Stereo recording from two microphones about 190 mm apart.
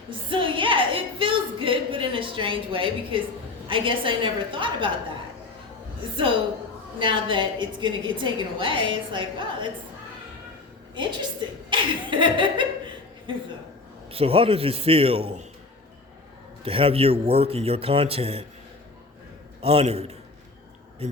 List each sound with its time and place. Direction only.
0.3 s a sound: 25° right (ahead or behind)
3.7 s a woman's voice: 25° right (ahead or behind)
6.0 s a woman's voice: 25° right (ahead or behind)
10.9 s speech: 25° right (ahead or behind)
14.1 s a man's voice: 30° right (ahead or behind)
16.6 s a man's voice: 30° right (ahead or behind)
19.6 s a man's voice: 30° right (ahead or behind)